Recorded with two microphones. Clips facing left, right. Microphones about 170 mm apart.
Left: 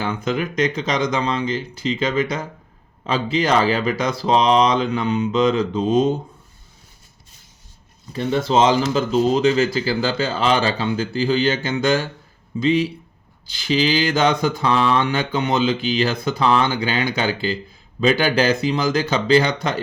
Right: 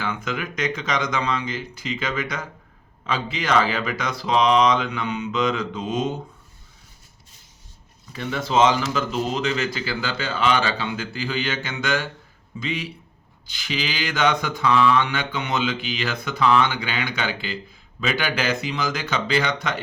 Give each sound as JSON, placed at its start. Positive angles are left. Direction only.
{"t": 0.0, "sound": "mantra", "side_deg": 30}
{"t": 8.1, "sound": "mantra", "side_deg": 30}